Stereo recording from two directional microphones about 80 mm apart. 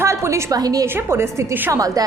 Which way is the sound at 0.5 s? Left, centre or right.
Right.